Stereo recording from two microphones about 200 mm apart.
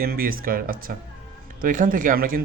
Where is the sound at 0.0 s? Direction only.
45° right (ahead or behind).